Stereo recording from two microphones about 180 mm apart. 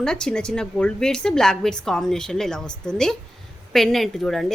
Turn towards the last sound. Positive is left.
turn(degrees=0)  # may be behind; listen again after turning